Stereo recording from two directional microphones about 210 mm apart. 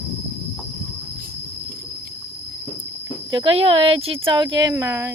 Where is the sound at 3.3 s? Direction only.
25° right (ahead or behind).